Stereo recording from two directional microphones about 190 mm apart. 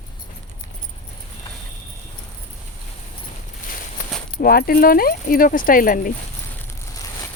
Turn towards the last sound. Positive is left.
turn(degrees=45)  # may be behind; listen again after turning